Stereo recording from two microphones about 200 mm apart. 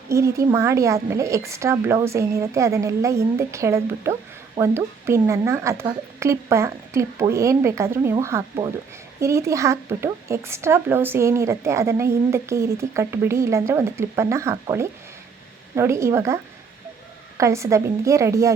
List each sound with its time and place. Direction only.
0.1 s speech: 15° right (ahead or behind)